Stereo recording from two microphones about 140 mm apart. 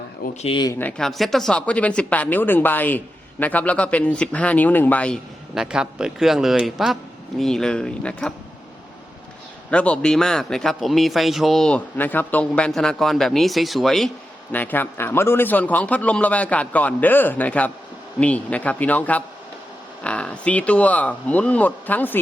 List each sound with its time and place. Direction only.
0.4 s speech: 35° left (ahead or behind)
0.7 s a man's voice: 10° left (ahead or behind)
5.5 s a man's voice: 5° right (ahead or behind)
9.6 s a man's voice: 10° left (ahead or behind)
14.5 s a man's voice: 15° left (ahead or behind)